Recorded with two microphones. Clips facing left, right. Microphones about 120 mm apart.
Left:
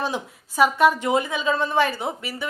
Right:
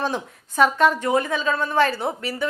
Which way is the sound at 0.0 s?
10° left (ahead or behind).